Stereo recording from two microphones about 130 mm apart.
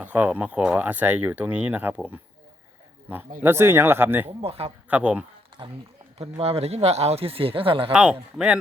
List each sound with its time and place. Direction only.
0.0 s speech: 10° right (ahead or behind)
3.4 s speech: 20° right (ahead or behind)
4.4 s speech: 45° right (ahead or behind)
4.9 s speech: 10° right (ahead or behind)
5.6 s speech: 35° right (ahead or behind)
6.4 s speech: 50° right (ahead or behind)
7.9 s speech: 5° right (ahead or behind)